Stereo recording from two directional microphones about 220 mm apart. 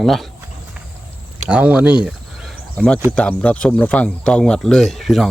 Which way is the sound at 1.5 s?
5° right (ahead or behind).